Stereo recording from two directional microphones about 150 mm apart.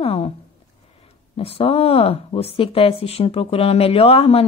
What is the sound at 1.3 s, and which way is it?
Speech, 40° left (ahead or behind).